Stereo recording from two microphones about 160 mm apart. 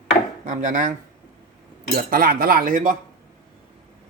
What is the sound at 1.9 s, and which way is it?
Cutlery, 70° right (ahead or behind).